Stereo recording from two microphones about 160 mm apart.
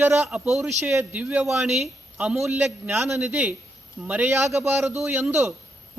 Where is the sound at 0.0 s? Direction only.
15° right (ahead or behind).